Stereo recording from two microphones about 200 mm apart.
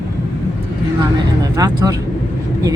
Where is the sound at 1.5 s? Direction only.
20° right (ahead or behind).